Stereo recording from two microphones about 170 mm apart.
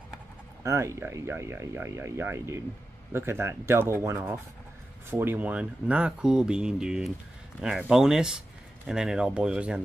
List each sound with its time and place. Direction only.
0.7 s speech: 15° right (ahead or behind)